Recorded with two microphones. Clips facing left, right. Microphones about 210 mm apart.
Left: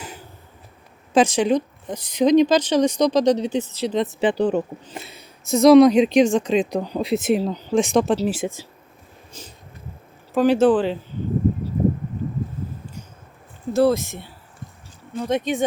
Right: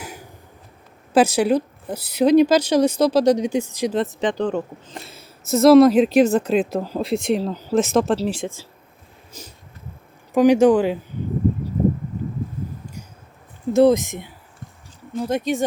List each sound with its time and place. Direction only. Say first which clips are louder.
0.0 s a sound: right 1 dB; 10° right (ahead or behind)
1.1 s a woman's voice: right 1 dB; 10° right (ahead or behind)
4.2 s speech: left 2 dB; 10° left (ahead or behind)
4.9 s speech: left 1 dB; centre (ahead or behind)
9.3 s a woman's voice: even; 10° right (ahead or behind)
13.7 s a woman's voice: right 3 dB; 20° right (ahead or behind)
15.2 s speech: even; centre (ahead or behind)